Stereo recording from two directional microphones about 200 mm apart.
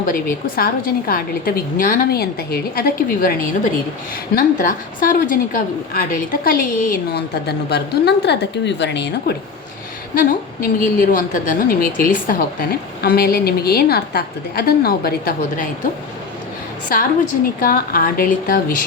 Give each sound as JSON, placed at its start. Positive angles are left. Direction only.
{"t": 0.0, "sound": "a woman's voice", "side_deg": 45}
{"t": 10.2, "sound": "a woman's voice", "side_deg": 40}
{"t": 17.6, "sound": "a woman's voice", "side_deg": 45}